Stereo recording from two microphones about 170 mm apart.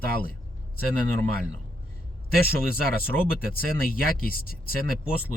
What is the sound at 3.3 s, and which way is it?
Speech, 60° left (ahead or behind).